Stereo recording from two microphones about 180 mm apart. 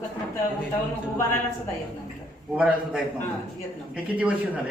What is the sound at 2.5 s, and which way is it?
Speech, 5° right (ahead or behind).